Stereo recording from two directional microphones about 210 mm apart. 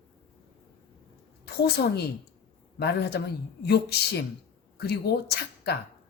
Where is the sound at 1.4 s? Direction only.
50° left (ahead or behind).